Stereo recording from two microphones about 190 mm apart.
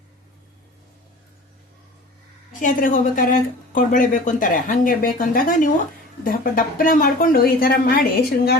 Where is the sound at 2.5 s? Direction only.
45° left (ahead or behind).